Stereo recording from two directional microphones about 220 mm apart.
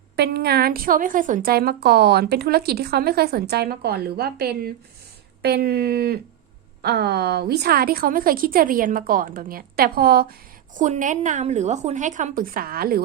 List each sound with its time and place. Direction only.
0.2 s a woman's voice: 50° right (ahead or behind)